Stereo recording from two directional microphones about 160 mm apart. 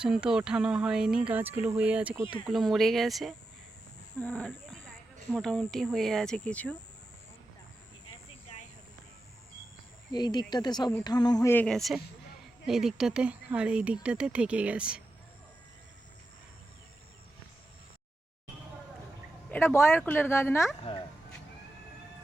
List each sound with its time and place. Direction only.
0.0 s speech: 5° right (ahead or behind)
10.1 s a sound: 25° left (ahead or behind)
11.5 s speech: 5° left (ahead or behind)
19.5 s speech: 15° left (ahead or behind)
20.9 s speech: 35° left (ahead or behind)